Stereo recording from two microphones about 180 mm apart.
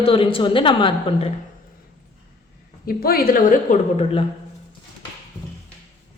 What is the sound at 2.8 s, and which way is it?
Speech, 55° left (ahead or behind).